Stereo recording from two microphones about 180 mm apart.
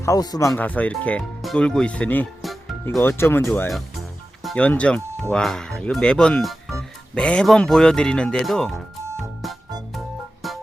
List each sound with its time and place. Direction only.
0.0 s speech: 20° left (ahead or behind); by 8.8 s centre (ahead or behind)
10.4 s music: centre (ahead or behind)